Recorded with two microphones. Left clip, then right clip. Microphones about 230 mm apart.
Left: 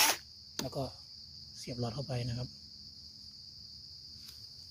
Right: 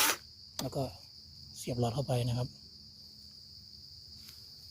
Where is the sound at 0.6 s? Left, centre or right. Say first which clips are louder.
Right 3 dB; centre.